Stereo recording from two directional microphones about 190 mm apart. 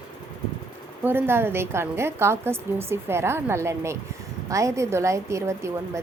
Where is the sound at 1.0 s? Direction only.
10° right (ahead or behind).